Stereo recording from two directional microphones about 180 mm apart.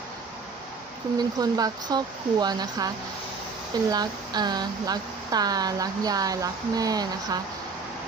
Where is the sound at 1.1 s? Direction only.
20° right (ahead or behind).